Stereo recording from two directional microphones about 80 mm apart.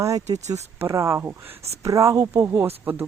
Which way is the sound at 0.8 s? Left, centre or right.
Right.